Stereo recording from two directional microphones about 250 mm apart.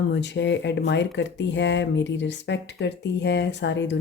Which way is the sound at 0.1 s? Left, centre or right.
Left.